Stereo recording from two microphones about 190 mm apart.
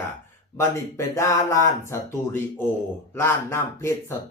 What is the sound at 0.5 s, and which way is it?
Speech, 15° left (ahead or behind).